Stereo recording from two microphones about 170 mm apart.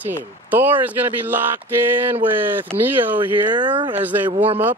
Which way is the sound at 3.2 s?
30° right (ahead or behind).